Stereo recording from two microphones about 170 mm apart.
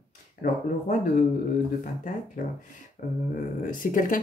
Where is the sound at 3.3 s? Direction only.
55° left (ahead or behind).